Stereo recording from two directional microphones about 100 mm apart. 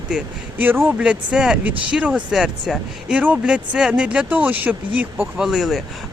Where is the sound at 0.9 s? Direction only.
10° right (ahead or behind).